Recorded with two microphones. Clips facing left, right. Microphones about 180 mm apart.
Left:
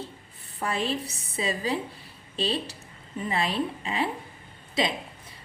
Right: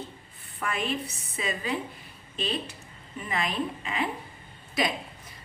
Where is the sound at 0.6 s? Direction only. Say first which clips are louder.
Left 2 dB; 30° left (ahead or behind).